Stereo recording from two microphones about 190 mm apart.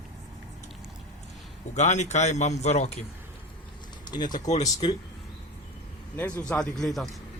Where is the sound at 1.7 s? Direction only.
40° left (ahead or behind).